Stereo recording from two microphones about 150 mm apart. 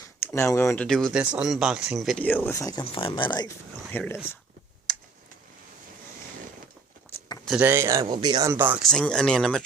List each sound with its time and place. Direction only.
0.2 s speech: 15° left (ahead or behind)
0.9 s speech: 5° left (ahead or behind); by 2.8 s 20° left (ahead or behind)
2.8 s speech: 40° left (ahead or behind)
3.9 s speech: 15° left (ahead or behind)
4.9 s clicking: centre (ahead or behind)
7.4 s speech: 10° right (ahead or behind); by 8.5 s 30° right (ahead or behind)
8.5 s speech: 10° right (ahead or behind)
8.8 s speech: 5° left (ahead or behind)